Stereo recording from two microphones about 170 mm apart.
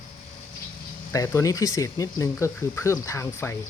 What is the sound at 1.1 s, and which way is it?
Speech, 15° left (ahead or behind).